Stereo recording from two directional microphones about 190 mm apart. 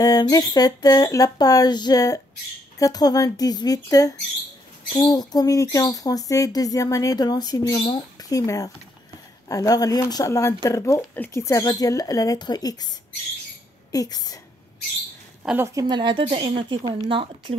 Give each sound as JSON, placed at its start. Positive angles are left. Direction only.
{"t": 0.0, "sound": "speech", "side_deg": 20}
{"t": 13.9, "sound": "speech", "side_deg": 20}
{"t": 15.4, "sound": "a woman's voice", "side_deg": -10}